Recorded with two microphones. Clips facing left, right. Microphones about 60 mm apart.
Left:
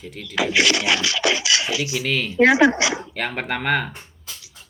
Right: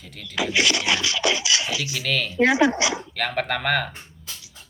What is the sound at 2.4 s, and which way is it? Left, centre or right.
Speech, left.